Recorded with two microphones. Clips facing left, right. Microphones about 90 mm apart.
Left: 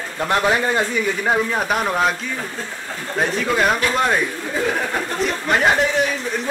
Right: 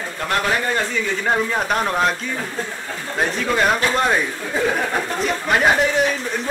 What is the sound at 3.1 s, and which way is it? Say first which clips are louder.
Speech: left 1 dB; centre (ahead or behind).